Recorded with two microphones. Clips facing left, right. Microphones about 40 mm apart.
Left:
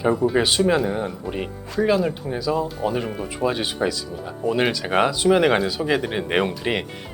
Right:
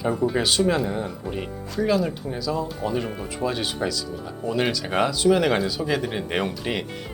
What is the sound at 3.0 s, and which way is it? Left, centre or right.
Speech, centre.